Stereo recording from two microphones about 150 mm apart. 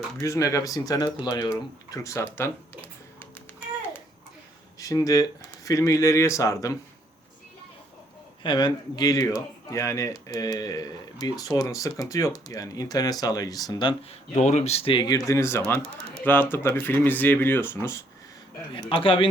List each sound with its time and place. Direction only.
0.2 s speech: 20° left (ahead or behind)
4.8 s speech: 25° left (ahead or behind)
8.4 s speech: 30° left (ahead or behind)
14.1 s speech: 45° left (ahead or behind); by 15.2 s 30° left (ahead or behind)
15.3 s speech: 20° left (ahead or behind)
18.7 s speech: 35° left (ahead or behind)